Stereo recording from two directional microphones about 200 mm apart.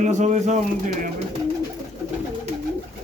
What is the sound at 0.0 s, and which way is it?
Speech, 35° right (ahead or behind).